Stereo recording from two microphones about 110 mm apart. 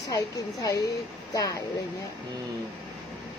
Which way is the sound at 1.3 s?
30° left (ahead or behind).